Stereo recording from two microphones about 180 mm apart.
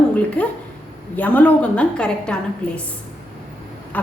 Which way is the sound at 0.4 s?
5° left (ahead or behind).